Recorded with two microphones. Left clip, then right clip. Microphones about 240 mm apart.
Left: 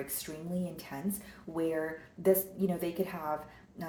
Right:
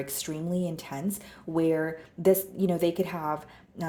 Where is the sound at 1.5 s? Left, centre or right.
Right.